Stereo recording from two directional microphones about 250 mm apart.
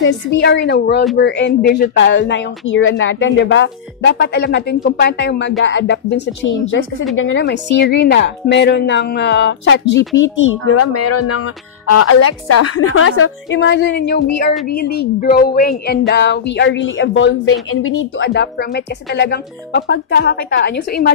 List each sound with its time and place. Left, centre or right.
0.0 s speech: left
10.2 s speech: left